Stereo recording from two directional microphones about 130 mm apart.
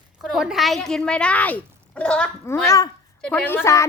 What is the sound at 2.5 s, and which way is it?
Speech, 20° left (ahead or behind).